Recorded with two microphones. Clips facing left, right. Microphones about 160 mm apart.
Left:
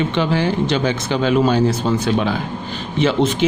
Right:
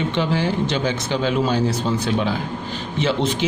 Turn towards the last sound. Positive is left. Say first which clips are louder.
# left 4 dB
turn(degrees=60)  # may be behind; listen again after turning